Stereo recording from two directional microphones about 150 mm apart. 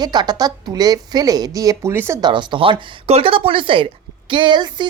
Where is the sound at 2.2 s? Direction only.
30° right (ahead or behind).